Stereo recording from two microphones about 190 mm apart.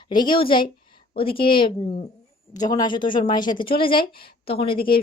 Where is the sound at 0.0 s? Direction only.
25° left (ahead or behind).